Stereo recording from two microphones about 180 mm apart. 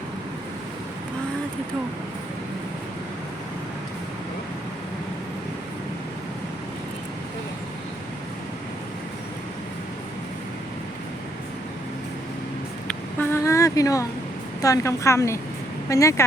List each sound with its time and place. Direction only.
12.9 s vehicle: 10° left (ahead or behind)
14.6 s a woman's voice: 15° left (ahead or behind)